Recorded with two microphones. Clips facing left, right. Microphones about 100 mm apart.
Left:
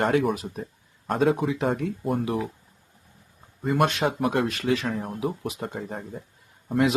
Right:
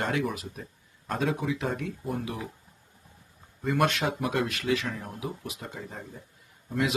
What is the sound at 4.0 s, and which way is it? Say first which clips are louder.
Speech: left 4 dB; 40° left (ahead or behind).